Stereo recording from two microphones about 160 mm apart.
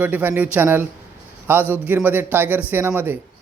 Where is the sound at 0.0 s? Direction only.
10° right (ahead or behind).